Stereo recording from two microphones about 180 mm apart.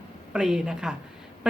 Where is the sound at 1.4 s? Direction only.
5° right (ahead or behind).